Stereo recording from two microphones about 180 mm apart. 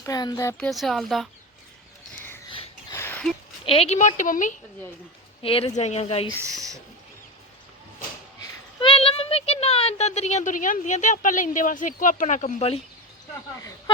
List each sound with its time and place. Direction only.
0.0 s speech: 20° left (ahead or behind)
0.6 s speech: centre (ahead or behind)
2.9 s a sound: 10° left (ahead or behind)
3.7 s a woman's voice: 35° left (ahead or behind)
5.4 s a woman's voice: 30° left (ahead or behind)
6.4 s speech: 20° right (ahead or behind)
8.4 s speech: 30° left (ahead or behind)